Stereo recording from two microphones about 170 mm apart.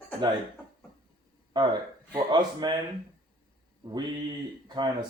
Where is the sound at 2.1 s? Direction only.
25° right (ahead or behind).